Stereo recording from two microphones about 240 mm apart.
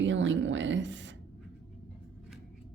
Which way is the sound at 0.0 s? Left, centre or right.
Right.